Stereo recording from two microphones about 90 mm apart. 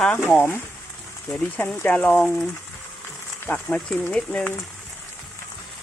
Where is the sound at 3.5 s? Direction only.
10° left (ahead or behind).